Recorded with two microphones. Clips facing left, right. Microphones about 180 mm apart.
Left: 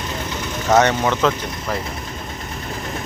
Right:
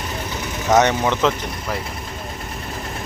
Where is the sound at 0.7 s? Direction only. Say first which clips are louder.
Even; 15° right (ahead or behind).